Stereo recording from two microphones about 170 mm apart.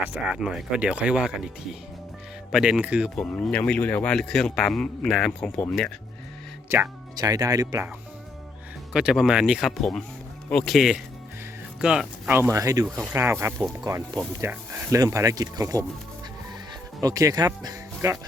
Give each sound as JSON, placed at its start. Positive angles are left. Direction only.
{"t": 0.0, "sound": "speech", "side_deg": -10}
{"t": 2.5, "sound": "a man's voice", "side_deg": -5}
{"t": 3.2, "sound": "a man's voice", "side_deg": 5}
{"t": 6.7, "sound": "speech", "side_deg": -15}
{"t": 8.9, "sound": "a man's voice", "side_deg": -5}
{"t": 12.4, "sound": "speech", "side_deg": -20}
{"t": 17.0, "sound": "speech", "side_deg": -20}